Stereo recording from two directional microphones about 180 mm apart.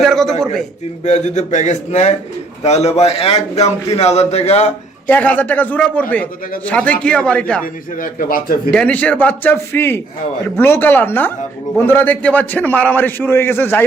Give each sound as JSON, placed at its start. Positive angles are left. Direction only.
{"t": 0.0, "sound": "a sound", "side_deg": 0}
{"t": 1.0, "sound": "a man's voice", "side_deg": 40}
{"t": 5.0, "sound": "a man's voice", "side_deg": 10}
{"t": 7.6, "sound": "a man's voice", "side_deg": 50}
{"t": 8.7, "sound": "a man's voice", "side_deg": 5}